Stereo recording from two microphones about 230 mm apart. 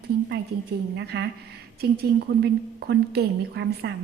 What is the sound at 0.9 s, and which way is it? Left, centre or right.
A woman's voice, right.